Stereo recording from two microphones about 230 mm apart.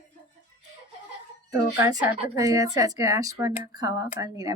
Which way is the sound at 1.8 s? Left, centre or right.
Centre.